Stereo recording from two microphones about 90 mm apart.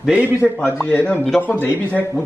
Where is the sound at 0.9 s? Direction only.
15° left (ahead or behind).